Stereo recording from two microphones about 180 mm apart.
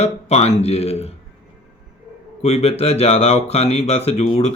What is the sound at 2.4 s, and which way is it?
Speech, 35° left (ahead or behind).